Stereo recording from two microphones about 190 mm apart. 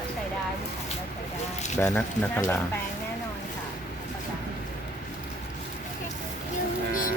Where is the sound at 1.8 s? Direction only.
10° left (ahead or behind).